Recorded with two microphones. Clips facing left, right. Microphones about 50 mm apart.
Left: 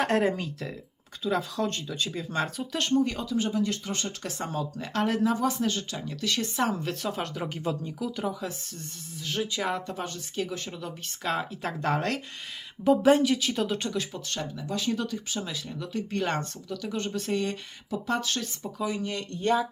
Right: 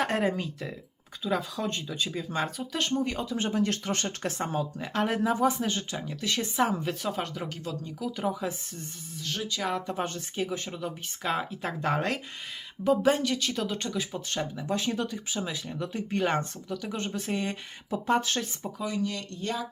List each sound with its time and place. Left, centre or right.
0.0 s speech: centre
3.3 s speech: right
3.6 s speech: right
4.2 s speech: right
4.4 s speech: right
6.6 s speech: centre
7.4 s speech: centre
7.9 s speech: centre
8.3 s speech: centre
9.1 s speech: centre
10.3 s speech: centre
14.1 s speech: centre
17.9 s speech: right
19.0 s speech: left